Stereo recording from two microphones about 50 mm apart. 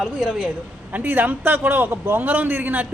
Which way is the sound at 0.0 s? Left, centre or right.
Centre.